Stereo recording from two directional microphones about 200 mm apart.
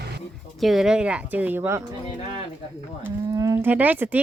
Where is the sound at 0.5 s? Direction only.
Centre (ahead or behind).